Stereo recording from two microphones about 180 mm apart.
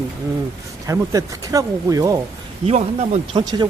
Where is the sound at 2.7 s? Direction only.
40° right (ahead or behind).